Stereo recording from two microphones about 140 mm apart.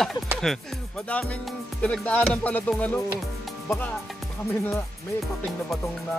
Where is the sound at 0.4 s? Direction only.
5° left (ahead or behind).